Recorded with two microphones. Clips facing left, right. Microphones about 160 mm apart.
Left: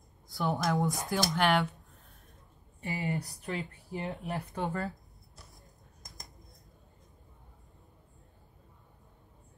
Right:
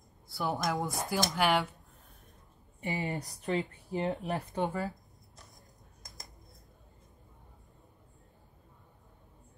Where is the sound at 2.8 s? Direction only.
20° right (ahead or behind).